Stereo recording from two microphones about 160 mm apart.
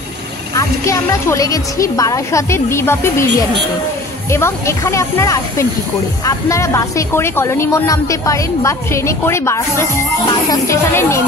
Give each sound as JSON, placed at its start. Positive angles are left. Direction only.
{"t": 0.6, "sound": "speech", "side_deg": 20}